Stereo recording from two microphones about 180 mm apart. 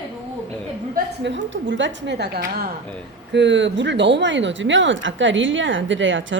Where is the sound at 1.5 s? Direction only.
90° right; by 2.4 s 70° right (ahead or behind).